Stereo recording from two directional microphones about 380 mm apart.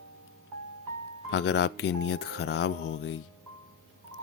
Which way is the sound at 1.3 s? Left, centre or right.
Left.